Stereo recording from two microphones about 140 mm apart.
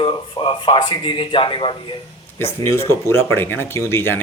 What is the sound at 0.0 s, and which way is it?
Speech, 35° left (ahead or behind).